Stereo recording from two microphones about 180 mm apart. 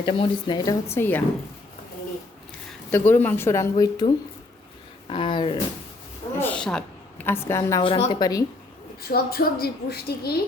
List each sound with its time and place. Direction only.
0.0 s speech: 30° left (ahead or behind); by 1.2 s 10° left (ahead or behind)
2.9 s speech: 10° left (ahead or behind); by 5.5 s 30° left (ahead or behind)
6.4 s a woman's voice: 5° left (ahead or behind)
7.9 s a woman's voice: 35° left (ahead or behind)
8.1 s speech: 20° left (ahead or behind)
9.0 s a woman's voice: 60° left (ahead or behind)